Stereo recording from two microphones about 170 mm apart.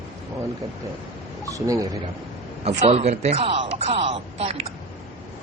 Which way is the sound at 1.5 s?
20° right (ahead or behind).